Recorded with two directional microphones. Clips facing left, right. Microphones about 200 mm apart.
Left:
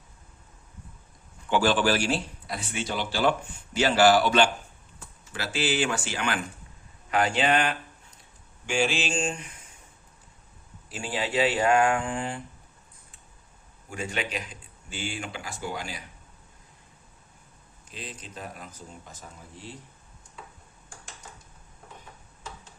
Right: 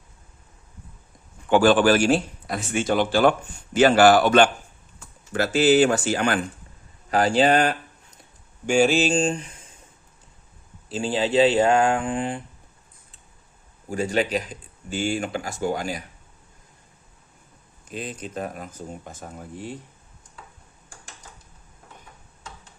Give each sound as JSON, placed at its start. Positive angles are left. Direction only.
{"t": 1.5, "sound": "speech", "side_deg": -50}
{"t": 7.1, "sound": "mantra", "side_deg": -35}
{"t": 10.8, "sound": "speech", "side_deg": -30}
{"t": 13.9, "sound": "speech", "side_deg": -35}
{"t": 17.8, "sound": "speech", "side_deg": -50}